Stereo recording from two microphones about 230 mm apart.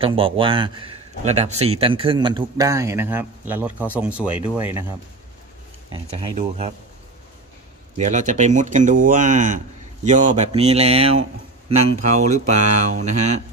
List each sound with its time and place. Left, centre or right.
0.0 s speech: right
5.9 s speech: right
8.0 s speech: right
12.3 s speech: right